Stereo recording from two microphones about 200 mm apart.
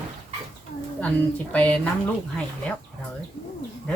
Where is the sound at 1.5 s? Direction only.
5° left (ahead or behind).